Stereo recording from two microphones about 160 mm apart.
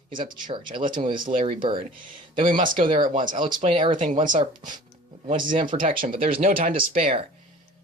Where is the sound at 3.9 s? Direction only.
50° right (ahead or behind).